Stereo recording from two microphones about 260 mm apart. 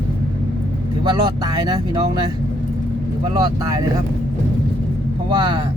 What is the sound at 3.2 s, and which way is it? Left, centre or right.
Speech, centre.